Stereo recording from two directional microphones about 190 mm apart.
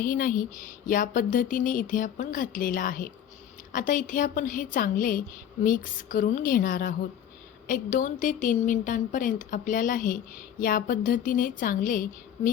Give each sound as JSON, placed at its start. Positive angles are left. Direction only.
{"t": 0.0, "sound": "speech", "side_deg": 50}